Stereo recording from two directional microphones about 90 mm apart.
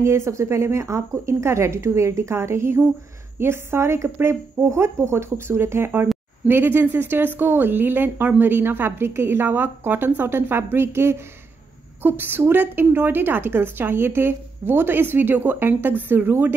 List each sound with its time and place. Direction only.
0.0 s speech: 30° right (ahead or behind)